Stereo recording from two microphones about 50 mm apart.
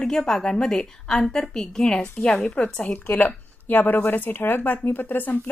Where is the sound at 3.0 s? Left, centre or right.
Left.